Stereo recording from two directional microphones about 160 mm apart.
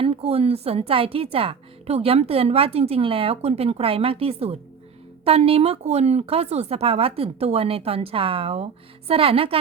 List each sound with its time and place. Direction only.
0.0 s a woman's voice: 40° right (ahead or behind)